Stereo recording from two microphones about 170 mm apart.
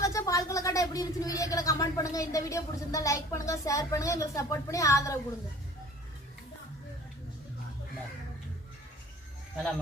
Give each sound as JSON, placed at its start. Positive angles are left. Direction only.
{"t": 0.0, "sound": "speech", "side_deg": 20}